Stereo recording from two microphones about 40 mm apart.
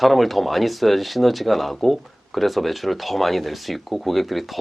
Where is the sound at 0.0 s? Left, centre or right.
Centre.